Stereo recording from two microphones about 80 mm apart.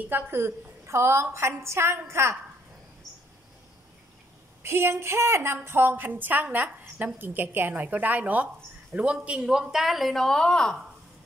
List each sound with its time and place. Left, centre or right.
0.1 s a woman's voice: right
4.6 s a woman's voice: right; by 10.8 s centre